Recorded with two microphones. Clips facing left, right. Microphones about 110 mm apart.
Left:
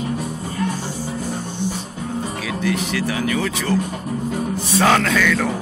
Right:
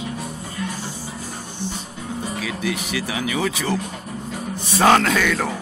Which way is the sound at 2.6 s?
5° right (ahead or behind).